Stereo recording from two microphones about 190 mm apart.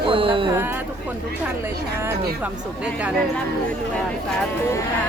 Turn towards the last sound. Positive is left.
turn(degrees=-5)  # may be behind; listen again after turning